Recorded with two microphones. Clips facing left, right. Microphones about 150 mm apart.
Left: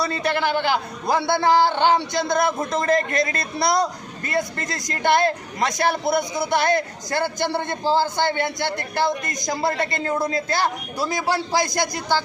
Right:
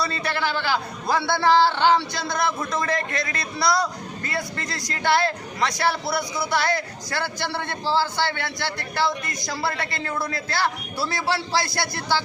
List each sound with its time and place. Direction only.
0.0 s a man's voice: 20° left (ahead or behind)
2.1 s speech: 50° left (ahead or behind)
3.6 s a man's voice: 20° left (ahead or behind)
7.9 s speech: 50° left (ahead or behind)
8.1 s a man's voice: 20° left (ahead or behind)
8.6 s speech: 50° left (ahead or behind)
9.4 s a man's voice: 20° left (ahead or behind)